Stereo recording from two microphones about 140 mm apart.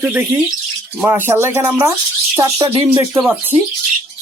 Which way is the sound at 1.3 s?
15° right (ahead or behind).